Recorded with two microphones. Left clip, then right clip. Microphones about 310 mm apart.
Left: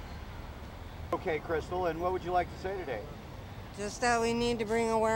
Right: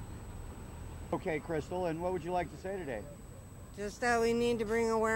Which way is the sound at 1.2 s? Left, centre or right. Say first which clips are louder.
Left 3 dB; left.